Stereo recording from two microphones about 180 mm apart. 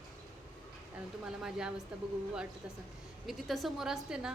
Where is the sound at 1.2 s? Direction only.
5° right (ahead or behind).